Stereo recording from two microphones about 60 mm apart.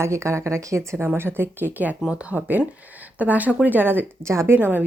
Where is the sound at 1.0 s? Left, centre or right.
Right.